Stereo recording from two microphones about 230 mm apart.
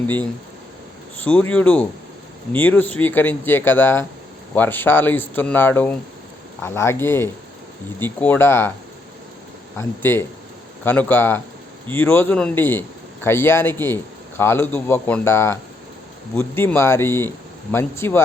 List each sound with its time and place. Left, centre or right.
1.2 s a man's voice: centre
9.7 s a man's voice: centre